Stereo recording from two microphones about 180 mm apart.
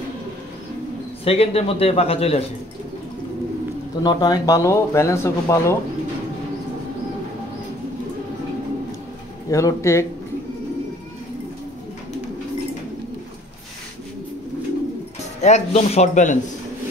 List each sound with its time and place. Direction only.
1.2 s a man's voice: 35° left (ahead or behind)
4.0 s speech: 20° left (ahead or behind)
9.5 s speech: 15° left (ahead or behind)
15.4 s a man's voice: 35° left (ahead or behind)